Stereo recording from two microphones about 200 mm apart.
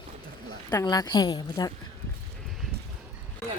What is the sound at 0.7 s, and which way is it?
Speech, 20° left (ahead or behind).